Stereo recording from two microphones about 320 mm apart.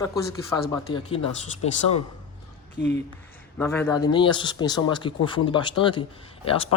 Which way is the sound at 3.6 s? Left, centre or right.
Centre.